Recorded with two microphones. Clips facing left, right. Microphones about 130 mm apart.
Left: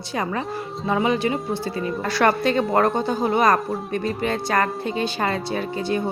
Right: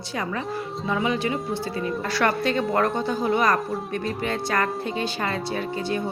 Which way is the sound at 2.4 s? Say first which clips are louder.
Left 3 dB; 30° left (ahead or behind).